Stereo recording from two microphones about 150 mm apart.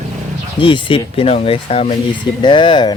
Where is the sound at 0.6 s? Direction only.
35° left (ahead or behind).